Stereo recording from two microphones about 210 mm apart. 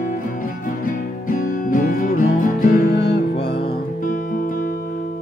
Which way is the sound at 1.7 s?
40° left (ahead or behind).